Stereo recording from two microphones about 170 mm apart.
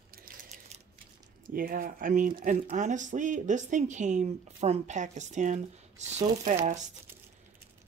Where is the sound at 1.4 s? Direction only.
55° right (ahead or behind).